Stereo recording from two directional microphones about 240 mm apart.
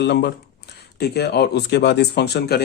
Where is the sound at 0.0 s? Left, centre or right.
Left.